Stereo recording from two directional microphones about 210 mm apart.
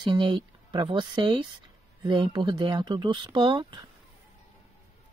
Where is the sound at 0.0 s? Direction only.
20° right (ahead or behind).